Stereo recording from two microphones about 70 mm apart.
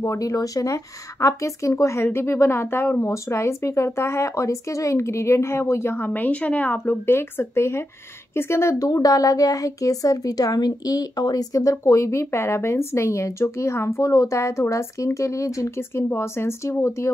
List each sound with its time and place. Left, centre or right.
0.0 s a woman's voice: left
6.9 s a woman's voice: left
8.8 s a woman's voice: left